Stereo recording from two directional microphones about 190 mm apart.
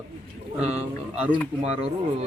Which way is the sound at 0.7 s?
10° right (ahead or behind).